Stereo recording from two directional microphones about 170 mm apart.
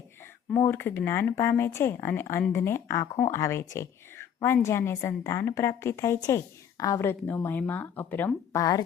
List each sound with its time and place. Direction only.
0.5 s speech: 15° left (ahead or behind)